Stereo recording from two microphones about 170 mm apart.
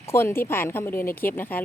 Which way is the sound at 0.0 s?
15° left (ahead or behind).